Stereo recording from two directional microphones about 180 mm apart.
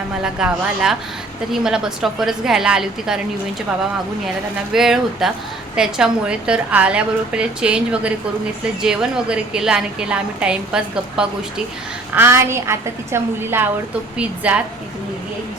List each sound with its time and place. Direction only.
0.2 s a woman's voice: 5° right (ahead or behind)
4.7 s a woman's voice: centre (ahead or behind)